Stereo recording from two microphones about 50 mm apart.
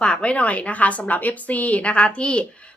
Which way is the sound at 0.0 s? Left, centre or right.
Left.